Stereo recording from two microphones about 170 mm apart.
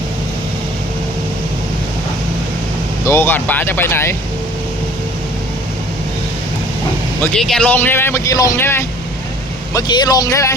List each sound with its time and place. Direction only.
3.0 s speech: 15° left (ahead or behind)
7.2 s speech: 5° left (ahead or behind); by 10.5 s 20° left (ahead or behind)